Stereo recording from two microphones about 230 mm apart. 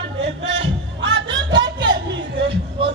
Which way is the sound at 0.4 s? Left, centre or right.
Right.